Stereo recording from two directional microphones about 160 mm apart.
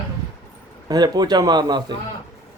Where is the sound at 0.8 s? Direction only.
25° right (ahead or behind).